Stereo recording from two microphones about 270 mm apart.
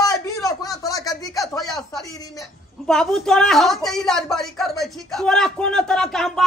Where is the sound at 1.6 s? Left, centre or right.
Centre.